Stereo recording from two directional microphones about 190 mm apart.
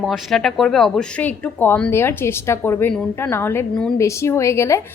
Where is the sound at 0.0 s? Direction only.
Centre (ahead or behind).